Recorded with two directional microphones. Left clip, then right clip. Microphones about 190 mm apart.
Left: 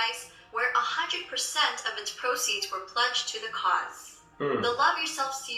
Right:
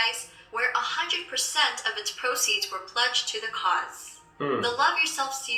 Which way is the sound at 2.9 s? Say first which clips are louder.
Right 2 dB; 35° right (ahead or behind).